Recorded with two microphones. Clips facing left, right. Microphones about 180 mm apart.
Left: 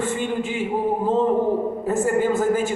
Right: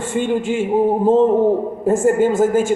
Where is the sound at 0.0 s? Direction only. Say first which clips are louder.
Right 5 dB; 45° right (ahead or behind).